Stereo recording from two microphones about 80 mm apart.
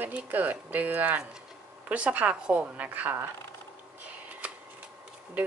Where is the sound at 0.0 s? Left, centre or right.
Right.